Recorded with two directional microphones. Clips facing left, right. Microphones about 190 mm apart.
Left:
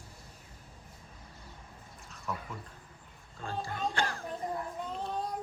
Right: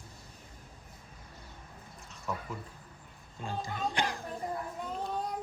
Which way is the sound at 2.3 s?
Centre (ahead or behind).